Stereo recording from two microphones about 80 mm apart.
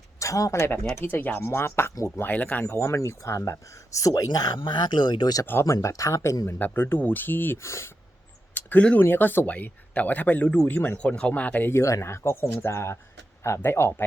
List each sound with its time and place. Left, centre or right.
0.2 s speech: left
0.5 s speech: left
2.7 s speech: left
4.2 s speech: left
5.6 s speech: left
6.7 s speech: left
7.6 s speech: left
8.5 s a sound: centre
9.0 s speech: left
10.8 s speech: left
11.0 s speech: centre
11.7 s speech: left